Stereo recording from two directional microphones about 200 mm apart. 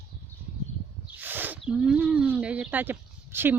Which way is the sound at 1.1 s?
10° right (ahead or behind).